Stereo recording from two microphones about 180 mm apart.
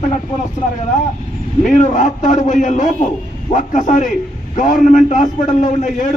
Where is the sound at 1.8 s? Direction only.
45° left (ahead or behind).